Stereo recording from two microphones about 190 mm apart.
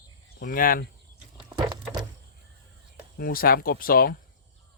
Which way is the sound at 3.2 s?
50° left (ahead or behind).